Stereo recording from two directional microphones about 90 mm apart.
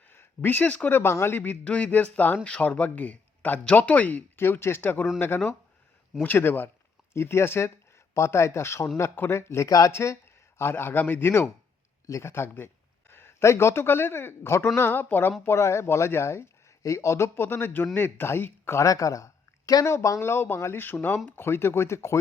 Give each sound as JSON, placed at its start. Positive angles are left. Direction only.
{"t": 0.1, "sound": "a man's voice", "side_deg": 25}
{"t": 6.2, "sound": "a man's voice", "side_deg": 25}